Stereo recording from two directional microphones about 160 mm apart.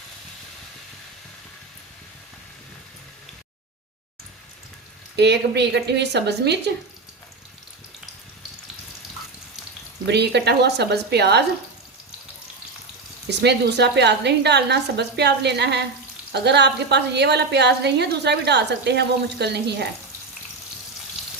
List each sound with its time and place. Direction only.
5.1 s a woman's voice: 90° right
10.1 s a woman's voice: 90° right
13.2 s a woman's voice: 90° right